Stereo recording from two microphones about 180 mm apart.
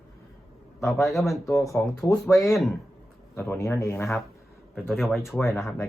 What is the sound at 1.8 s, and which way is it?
Speech, 10° left (ahead or behind).